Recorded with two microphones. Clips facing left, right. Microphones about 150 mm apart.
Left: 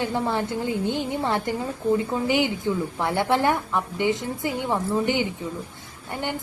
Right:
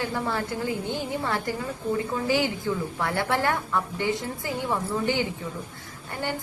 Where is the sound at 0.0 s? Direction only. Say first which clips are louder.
Left 3 dB; 20° left (ahead or behind).